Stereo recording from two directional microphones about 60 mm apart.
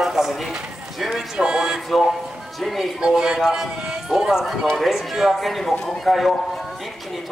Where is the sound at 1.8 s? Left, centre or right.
Centre.